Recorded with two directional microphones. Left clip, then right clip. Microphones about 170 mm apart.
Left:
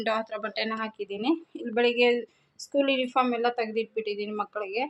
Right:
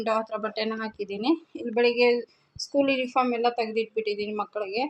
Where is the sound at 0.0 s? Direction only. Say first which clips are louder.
Right 2 dB; centre (ahead or behind).